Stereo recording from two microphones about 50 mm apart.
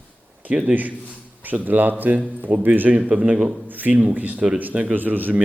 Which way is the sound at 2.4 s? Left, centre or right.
Right.